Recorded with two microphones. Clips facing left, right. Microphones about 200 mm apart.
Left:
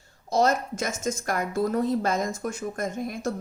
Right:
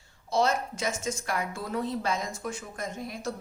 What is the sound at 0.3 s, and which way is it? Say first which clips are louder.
A woman's voice: left 3 dB; 40° left (ahead or behind).